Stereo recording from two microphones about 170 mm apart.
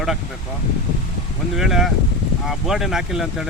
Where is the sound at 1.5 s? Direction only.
Centre (ahead or behind).